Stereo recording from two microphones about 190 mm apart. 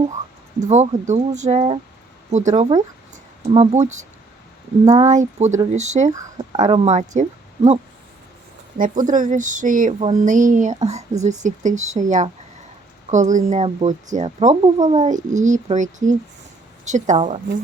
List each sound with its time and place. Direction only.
0.6 s speech: 40° right (ahead or behind)
6.1 s speech: 20° right (ahead or behind)
6.9 s speech: 40° right (ahead or behind)
8.8 s speech: 45° right (ahead or behind)